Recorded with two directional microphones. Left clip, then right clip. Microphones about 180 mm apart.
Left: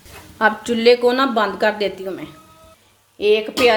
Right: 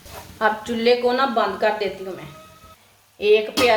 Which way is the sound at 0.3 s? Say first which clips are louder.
Left 4 dB; 55° left (ahead or behind).